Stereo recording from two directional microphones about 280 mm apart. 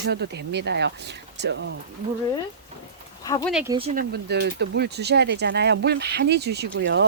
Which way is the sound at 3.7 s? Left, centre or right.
Right.